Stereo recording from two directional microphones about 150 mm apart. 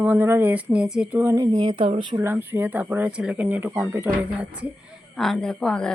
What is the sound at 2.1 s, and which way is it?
A woman's voice, 15° right (ahead or behind).